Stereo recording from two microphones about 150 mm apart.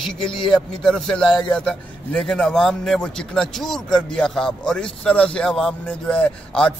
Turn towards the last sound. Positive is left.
turn(degrees=5)  # may be behind; listen again after turning